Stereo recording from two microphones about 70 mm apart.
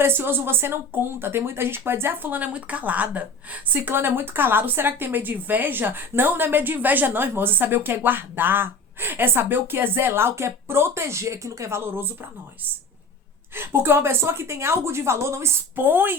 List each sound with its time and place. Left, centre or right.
0.0 s speech: right
13.5 s speech: right